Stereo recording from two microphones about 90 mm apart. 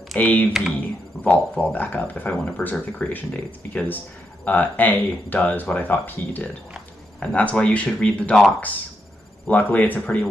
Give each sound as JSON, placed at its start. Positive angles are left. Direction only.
{"t": 0.2, "sound": "speech", "side_deg": 20}
{"t": 0.5, "sound": "speech", "side_deg": -5}
{"t": 0.7, "sound": "speech", "side_deg": 15}
{"t": 9.5, "sound": "speech", "side_deg": 20}